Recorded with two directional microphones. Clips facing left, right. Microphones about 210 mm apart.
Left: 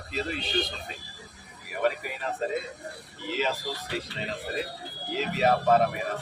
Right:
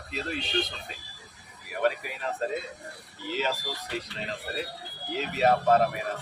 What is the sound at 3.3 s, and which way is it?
Speech, centre (ahead or behind).